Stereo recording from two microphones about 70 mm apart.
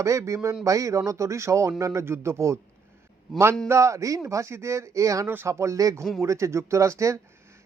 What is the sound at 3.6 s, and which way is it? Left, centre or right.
Speech, right.